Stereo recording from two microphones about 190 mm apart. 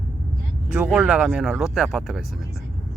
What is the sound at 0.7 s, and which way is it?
Speech, 5° right (ahead or behind).